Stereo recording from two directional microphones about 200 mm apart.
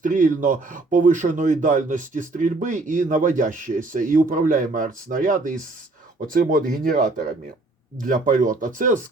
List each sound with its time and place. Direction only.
0.0 s speech: 40° right (ahead or behind)